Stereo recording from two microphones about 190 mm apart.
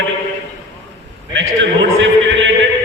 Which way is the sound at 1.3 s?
70° right (ahead or behind).